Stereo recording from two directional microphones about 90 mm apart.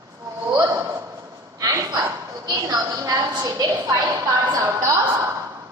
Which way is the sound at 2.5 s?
45° right (ahead or behind).